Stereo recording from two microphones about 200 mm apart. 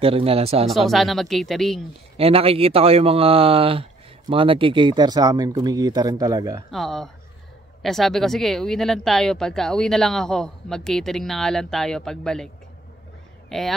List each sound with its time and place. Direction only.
0.0 s speech: 30° right (ahead or behind)
0.7 s speech: centre (ahead or behind)
2.1 s speech: 30° right (ahead or behind)
6.7 s speech: centre (ahead or behind)
13.5 s speech: centre (ahead or behind)